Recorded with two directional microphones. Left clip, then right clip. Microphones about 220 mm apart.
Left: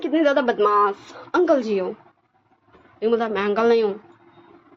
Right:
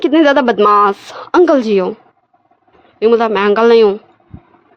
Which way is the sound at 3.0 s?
50° right (ahead or behind).